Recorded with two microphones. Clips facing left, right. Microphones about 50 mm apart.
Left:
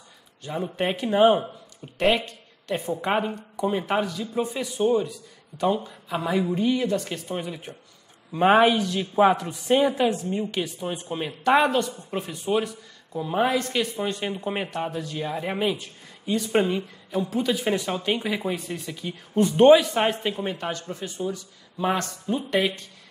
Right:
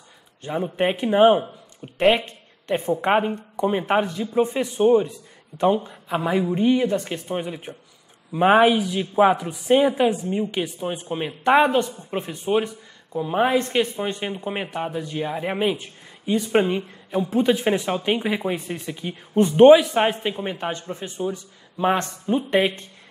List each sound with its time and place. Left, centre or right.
0.4 s a man's voice: right